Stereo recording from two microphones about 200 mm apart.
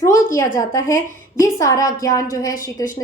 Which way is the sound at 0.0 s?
15° left (ahead or behind).